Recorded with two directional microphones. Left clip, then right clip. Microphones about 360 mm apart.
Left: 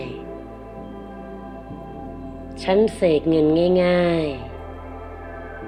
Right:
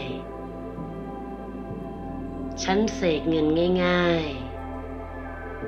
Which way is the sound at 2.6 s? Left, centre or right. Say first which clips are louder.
Left 6 dB; left.